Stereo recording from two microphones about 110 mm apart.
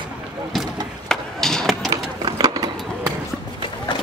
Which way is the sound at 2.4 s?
35° right (ahead or behind).